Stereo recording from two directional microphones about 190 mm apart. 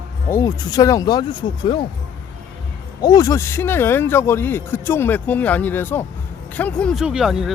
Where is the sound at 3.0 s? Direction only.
20° left (ahead or behind); by 7.5 s centre (ahead or behind).